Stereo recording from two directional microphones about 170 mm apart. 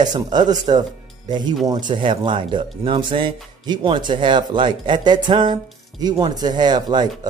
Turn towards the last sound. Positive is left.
turn(degrees=-25)  # may be behind; listen again after turning